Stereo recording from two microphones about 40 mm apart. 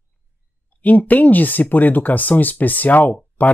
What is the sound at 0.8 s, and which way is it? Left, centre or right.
Speech, left.